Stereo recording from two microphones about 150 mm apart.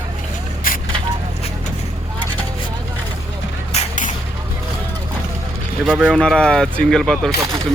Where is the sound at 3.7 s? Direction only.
50° left (ahead or behind).